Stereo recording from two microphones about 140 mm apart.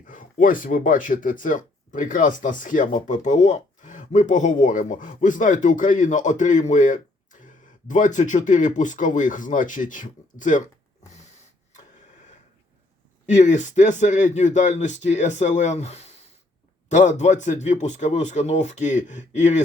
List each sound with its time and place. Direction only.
0.1 s speech: 70° left (ahead or behind)
13.2 s speech: 60° left (ahead or behind)